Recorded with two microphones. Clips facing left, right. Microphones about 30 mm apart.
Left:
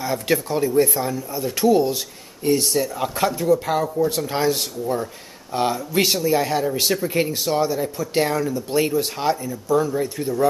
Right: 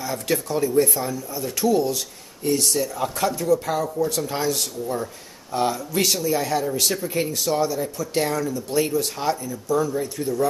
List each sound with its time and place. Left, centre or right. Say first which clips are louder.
0.0 s speech: left 3 dB; left
1.6 s speech: left 3 dB; left